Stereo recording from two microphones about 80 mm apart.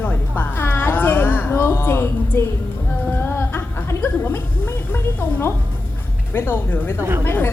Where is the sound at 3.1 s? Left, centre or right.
Left.